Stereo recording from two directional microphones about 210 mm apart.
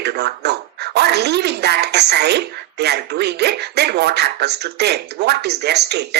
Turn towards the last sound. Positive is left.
turn(degrees=-50)  # may be behind; listen again after turning